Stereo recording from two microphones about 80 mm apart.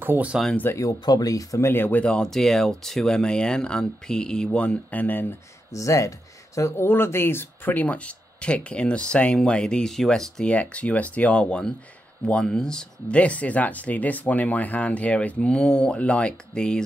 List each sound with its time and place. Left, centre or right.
0.0 s speech: right
0.7 s speech: left
1.7 s speech: left
5.7 s speech: left
6.8 s speech: left; by 10.5 s centre
10.5 s speech: centre